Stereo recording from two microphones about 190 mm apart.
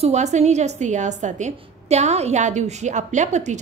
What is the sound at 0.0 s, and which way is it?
A woman's voice, 35° right (ahead or behind).